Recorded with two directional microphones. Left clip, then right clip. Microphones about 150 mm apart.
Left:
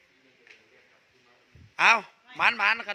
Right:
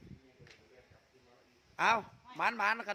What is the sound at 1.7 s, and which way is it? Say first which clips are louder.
A man's voice: left 9 dB; 5° right (ahead or behind).